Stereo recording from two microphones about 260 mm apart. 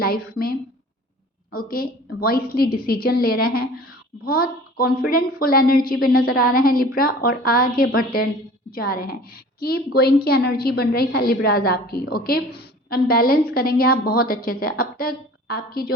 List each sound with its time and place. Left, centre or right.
0.0 s a woman's voice: left
1.5 s a woman's voice: left